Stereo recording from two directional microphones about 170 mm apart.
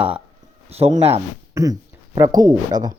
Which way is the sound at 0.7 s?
40° right (ahead or behind).